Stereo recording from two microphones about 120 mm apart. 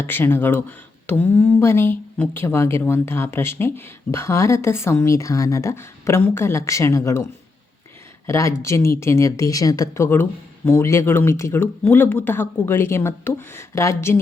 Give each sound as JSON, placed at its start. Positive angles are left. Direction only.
{"t": 0.0, "sound": "speech", "side_deg": 20}
{"t": 8.3, "sound": "speech", "side_deg": 25}